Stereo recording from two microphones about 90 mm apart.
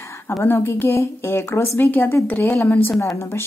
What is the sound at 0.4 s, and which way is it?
A woman's voice, 25° left (ahead or behind).